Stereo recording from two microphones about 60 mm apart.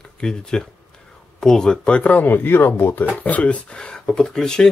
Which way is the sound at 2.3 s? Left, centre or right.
Left.